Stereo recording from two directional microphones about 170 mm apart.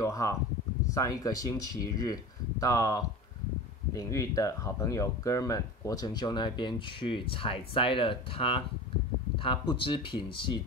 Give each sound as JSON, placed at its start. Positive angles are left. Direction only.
{"t": 0.0, "sound": "speech", "side_deg": 20}